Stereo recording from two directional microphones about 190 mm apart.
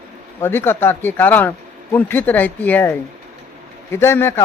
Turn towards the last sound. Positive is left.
turn(degrees=10)  # may be behind; listen again after turning